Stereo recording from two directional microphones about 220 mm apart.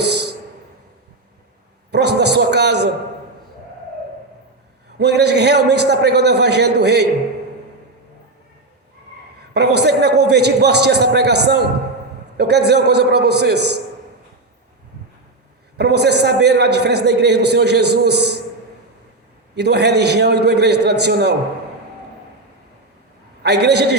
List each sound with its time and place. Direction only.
1.9 s a man's voice: 50° right (ahead or behind)
4.9 s a man's voice: 50° right (ahead or behind)
9.6 s a man's voice: 50° right (ahead or behind)
15.8 s a man's voice: 50° right (ahead or behind)
19.5 s a man's voice: 50° right (ahead or behind)
23.4 s a man's voice: 50° right (ahead or behind)